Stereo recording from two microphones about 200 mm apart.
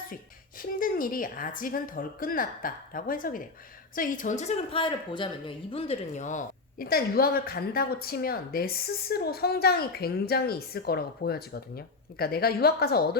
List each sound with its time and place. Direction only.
0.6 s a woman's voice: 45° left (ahead or behind)